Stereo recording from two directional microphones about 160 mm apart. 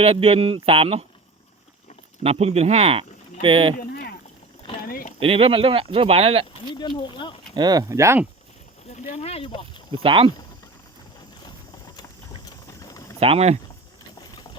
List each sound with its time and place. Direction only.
0.0 s speech: 35° right (ahead or behind)
2.2 s speech: 40° right (ahead or behind)
3.8 s a sound: 70° left (ahead or behind)
5.2 s speech: 35° right (ahead or behind)
6.5 s speech: 30° left (ahead or behind)
7.5 s speech: 25° right (ahead or behind)
8.9 s speech: 45° left (ahead or behind)
10.0 s speech: 35° right (ahead or behind)
11.9 s boiling: 25° left (ahead or behind)
13.1 s speech: 40° right (ahead or behind)